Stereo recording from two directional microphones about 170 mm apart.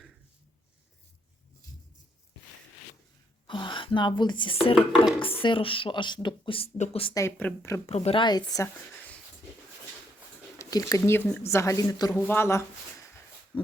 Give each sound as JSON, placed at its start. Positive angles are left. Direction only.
{"t": 3.4, "sound": "speech", "side_deg": 30}
{"t": 7.1, "sound": "speech", "side_deg": 15}
{"t": 7.9, "sound": "a woman's voice", "side_deg": 40}
{"t": 10.6, "sound": "speech", "side_deg": 20}